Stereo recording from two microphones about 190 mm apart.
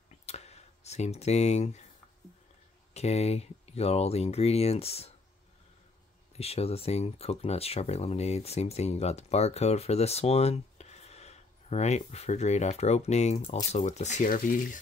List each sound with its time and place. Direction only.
0.1 s a sound: 35° left (ahead or behind)
2.9 s speech: 35° left (ahead or behind)
6.3 s speech: 30° left (ahead or behind)